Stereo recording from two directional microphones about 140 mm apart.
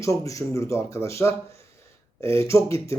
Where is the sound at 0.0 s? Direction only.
20° left (ahead or behind).